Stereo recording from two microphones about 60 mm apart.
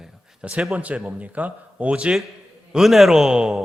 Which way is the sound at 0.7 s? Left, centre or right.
Right.